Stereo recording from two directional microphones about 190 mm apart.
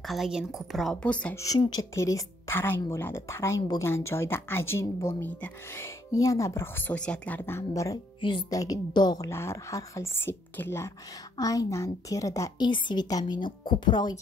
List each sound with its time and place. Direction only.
0.0 s a woman's voice: centre (ahead or behind)
1.4 s a woman's voice: 20° left (ahead or behind)